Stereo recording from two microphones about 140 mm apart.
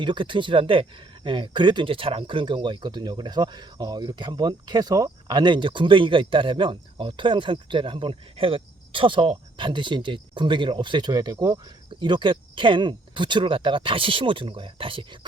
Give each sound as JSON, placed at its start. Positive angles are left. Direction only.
{"t": 0.0, "sound": "speech", "side_deg": -35}